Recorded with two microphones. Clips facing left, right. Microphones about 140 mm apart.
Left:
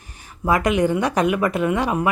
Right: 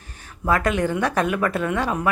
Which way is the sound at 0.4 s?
10° left (ahead or behind).